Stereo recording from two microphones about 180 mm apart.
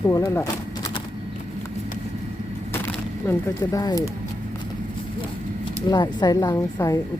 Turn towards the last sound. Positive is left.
turn(degrees=20)  # may be behind; listen again after turning